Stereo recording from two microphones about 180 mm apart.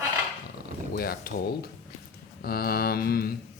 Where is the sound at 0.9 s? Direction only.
55° left (ahead or behind).